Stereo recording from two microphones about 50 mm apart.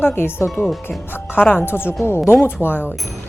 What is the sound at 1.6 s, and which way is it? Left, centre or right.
Speech, left.